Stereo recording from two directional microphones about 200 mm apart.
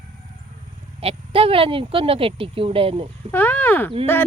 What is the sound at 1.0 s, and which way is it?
Speech, 30° right (ahead or behind).